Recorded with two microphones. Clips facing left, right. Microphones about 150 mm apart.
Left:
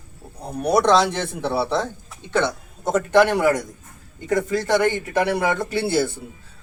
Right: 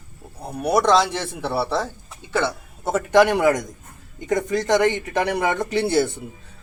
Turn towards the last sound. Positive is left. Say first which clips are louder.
# right 1 dB
turn(degrees=-20)  # may be behind; listen again after turning